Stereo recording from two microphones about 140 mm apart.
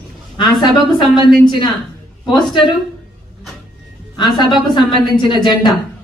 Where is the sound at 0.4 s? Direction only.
30° left (ahead or behind).